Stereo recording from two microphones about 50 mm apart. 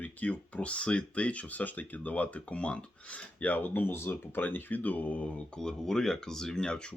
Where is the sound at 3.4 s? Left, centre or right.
Left.